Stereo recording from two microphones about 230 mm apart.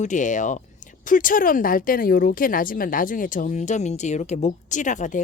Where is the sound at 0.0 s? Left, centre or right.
Left.